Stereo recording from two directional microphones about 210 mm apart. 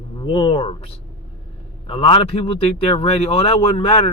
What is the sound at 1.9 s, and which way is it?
Speech, 25° left (ahead or behind).